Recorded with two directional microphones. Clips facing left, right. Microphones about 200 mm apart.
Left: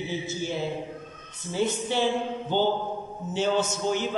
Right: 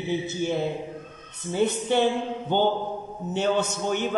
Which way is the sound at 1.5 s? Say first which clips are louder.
Right 4 dB; 55° right (ahead or behind).